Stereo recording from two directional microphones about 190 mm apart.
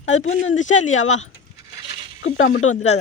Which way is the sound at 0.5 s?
40° left (ahead or behind).